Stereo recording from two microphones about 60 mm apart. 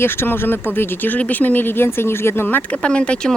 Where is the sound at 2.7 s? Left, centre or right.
Centre.